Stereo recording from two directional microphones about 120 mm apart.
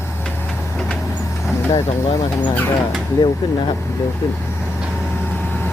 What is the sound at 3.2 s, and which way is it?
Speech, 40° left (ahead or behind).